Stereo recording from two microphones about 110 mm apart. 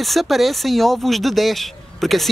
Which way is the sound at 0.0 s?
Centre (ahead or behind).